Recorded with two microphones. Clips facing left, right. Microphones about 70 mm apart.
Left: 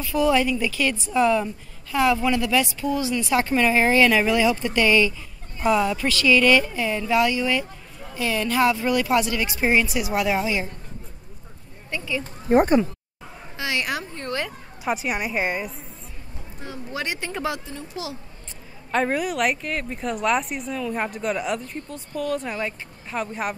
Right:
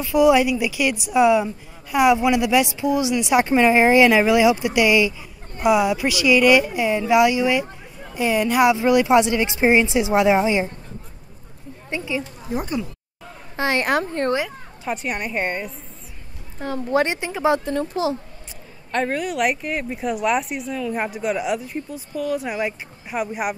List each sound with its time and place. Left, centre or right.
0.0 s a woman's voice: centre
11.9 s speech: centre
12.2 s speech: left
13.6 s a woman's voice: right
14.9 s a woman's voice: centre
16.6 s speech: right
17.0 s speech: right
17.7 s speech: right
18.9 s a woman's voice: centre